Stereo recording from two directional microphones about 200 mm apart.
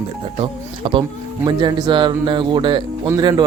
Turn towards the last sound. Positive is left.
turn(degrees=-20)  # may be behind; listen again after turning